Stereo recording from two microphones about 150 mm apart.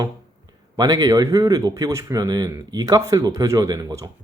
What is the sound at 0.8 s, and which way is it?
Speech, 25° right (ahead or behind).